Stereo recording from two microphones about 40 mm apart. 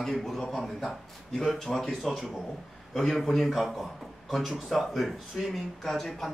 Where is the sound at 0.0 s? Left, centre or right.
Centre.